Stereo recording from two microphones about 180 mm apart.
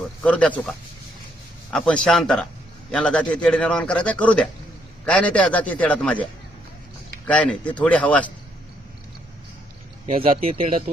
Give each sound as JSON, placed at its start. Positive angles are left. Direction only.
{"t": 0.2, "sound": "a man's voice", "side_deg": 5}
{"t": 1.7, "sound": "a man's voice", "side_deg": 0}
{"t": 7.3, "sound": "a man's voice", "side_deg": 5}
{"t": 10.1, "sound": "speech", "side_deg": -30}